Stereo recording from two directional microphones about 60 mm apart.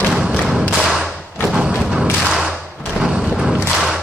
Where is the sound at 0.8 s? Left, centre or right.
Centre.